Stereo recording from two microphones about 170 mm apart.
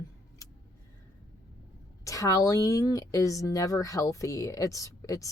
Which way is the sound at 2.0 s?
20° left (ahead or behind).